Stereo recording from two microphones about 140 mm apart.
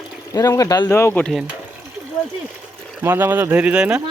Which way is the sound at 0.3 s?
25° left (ahead or behind).